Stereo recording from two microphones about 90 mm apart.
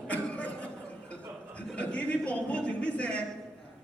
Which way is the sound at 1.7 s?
15° left (ahead or behind).